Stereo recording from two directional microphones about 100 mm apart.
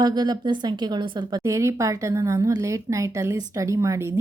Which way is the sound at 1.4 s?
30° right (ahead or behind).